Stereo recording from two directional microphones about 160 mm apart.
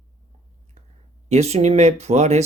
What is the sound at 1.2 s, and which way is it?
Speech, 40° right (ahead or behind).